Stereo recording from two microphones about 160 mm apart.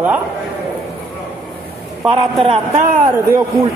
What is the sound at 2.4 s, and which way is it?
Speech, 40° right (ahead or behind).